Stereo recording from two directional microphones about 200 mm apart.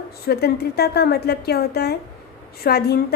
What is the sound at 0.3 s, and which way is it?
A woman's voice, 50° left (ahead or behind).